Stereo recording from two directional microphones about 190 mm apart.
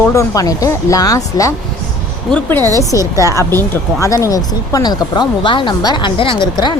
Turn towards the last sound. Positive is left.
turn(degrees=25)  # may be behind; listen again after turning